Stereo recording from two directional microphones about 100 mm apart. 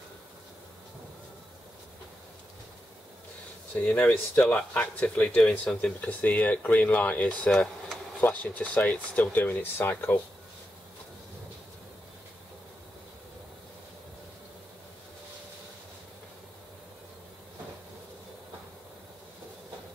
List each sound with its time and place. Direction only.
3.7 s speech: 15° left (ahead or behind)
8.2 s speech: 15° left (ahead or behind)